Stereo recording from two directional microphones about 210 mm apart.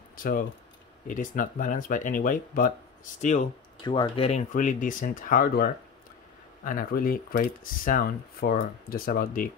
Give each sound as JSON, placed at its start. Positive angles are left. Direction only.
{"t": 0.1, "sound": "speech", "side_deg": 40}
{"t": 3.8, "sound": "speech", "side_deg": 20}